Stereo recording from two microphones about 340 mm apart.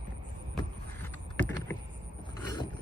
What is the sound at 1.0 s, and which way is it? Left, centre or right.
Rowboat, centre.